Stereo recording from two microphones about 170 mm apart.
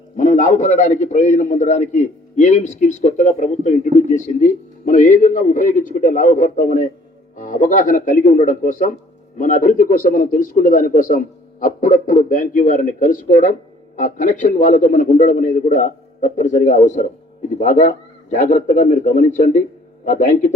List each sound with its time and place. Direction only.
0.2 s a man's voice: 45° left (ahead or behind)